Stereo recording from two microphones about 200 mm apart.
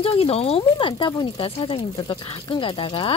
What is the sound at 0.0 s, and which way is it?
Speech, 30° left (ahead or behind).